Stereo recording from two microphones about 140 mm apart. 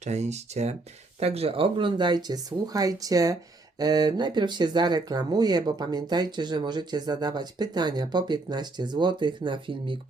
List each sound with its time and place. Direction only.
0.0 s speech: 55° right (ahead or behind); by 10.0 s 35° right (ahead or behind)